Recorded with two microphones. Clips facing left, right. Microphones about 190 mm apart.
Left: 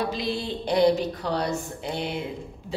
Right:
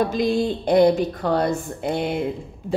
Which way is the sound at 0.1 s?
50° right (ahead or behind).